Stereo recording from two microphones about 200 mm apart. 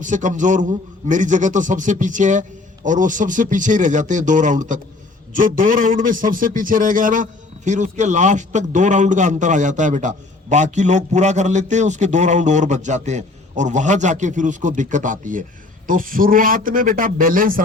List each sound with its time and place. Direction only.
0.0 s a man's voice: 40° right (ahead or behind)